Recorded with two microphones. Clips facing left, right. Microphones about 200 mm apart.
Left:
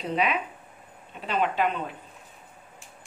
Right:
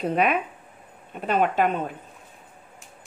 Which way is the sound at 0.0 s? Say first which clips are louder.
Right 4 dB; 50° right (ahead or behind).